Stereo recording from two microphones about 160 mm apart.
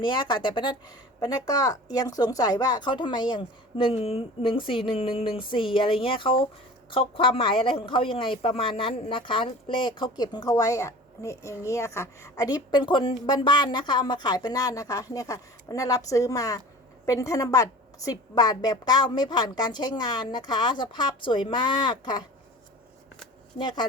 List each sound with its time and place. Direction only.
0.0 s speech: 30° left (ahead or behind)
23.6 s speech: 30° left (ahead or behind)